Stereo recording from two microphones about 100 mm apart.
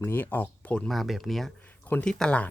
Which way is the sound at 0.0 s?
20° left (ahead or behind).